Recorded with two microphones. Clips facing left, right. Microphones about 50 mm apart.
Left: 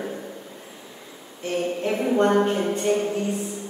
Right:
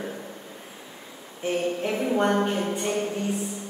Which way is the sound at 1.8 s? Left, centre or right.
Centre.